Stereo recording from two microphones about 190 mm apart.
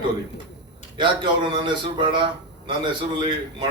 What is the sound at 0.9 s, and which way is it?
A man's voice, 25° right (ahead or behind).